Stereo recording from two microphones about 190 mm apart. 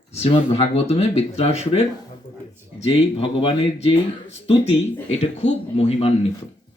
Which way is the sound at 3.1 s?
30° left (ahead or behind).